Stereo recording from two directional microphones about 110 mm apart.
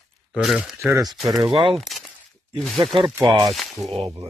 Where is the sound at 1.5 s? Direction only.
50° right (ahead or behind).